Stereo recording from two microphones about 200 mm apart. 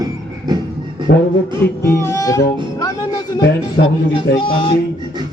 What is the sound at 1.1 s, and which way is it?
Speech, 55° left (ahead or behind).